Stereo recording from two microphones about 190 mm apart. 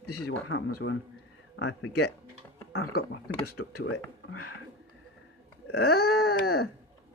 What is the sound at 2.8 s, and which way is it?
Speech, 55° left (ahead or behind).